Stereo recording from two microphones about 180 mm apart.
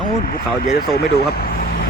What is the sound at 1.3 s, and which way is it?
Vehicle, 55° left (ahead or behind).